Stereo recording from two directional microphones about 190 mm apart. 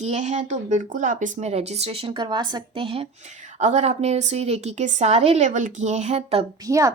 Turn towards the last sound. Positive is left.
turn(degrees=-15)  # may be behind; listen again after turning